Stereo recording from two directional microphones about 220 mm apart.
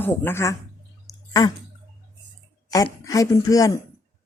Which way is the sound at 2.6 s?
15° left (ahead or behind).